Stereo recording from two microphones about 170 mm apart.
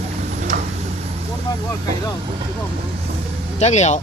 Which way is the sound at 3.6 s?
40° left (ahead or behind).